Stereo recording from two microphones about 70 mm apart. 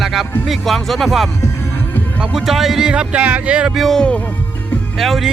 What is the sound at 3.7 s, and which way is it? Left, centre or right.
Speech, centre.